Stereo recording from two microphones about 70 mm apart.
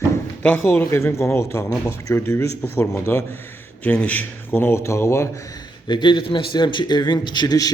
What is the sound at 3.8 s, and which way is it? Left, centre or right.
Speech, left.